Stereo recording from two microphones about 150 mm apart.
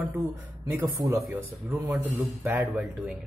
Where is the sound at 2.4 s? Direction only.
15° right (ahead or behind).